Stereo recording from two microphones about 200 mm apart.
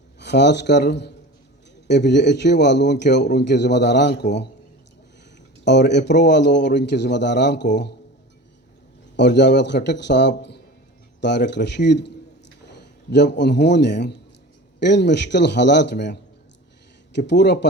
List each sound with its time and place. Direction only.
0.2 s a man's voice: 60° left (ahead or behind)
5.6 s a man's voice: 60° left (ahead or behind)
9.1 s a man's voice: 60° left (ahead or behind)